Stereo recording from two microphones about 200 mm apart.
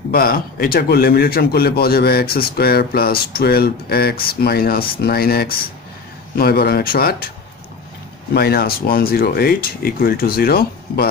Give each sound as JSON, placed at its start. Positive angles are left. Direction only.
{"t": 0.1, "sound": "a man's voice", "side_deg": 50}
{"t": 8.3, "sound": "a man's voice", "side_deg": 50}